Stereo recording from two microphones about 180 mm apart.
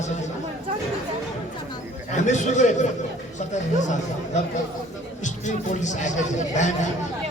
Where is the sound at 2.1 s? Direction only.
40° left (ahead or behind).